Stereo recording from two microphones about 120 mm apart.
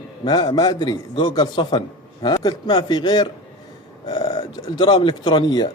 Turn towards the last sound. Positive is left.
turn(degrees=40)  # may be behind; listen again after turning